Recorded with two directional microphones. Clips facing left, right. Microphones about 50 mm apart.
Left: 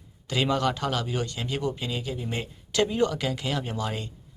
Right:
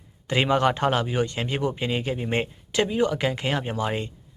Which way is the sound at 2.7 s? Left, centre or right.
Centre.